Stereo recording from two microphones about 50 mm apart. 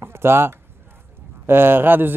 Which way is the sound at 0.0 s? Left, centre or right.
Right.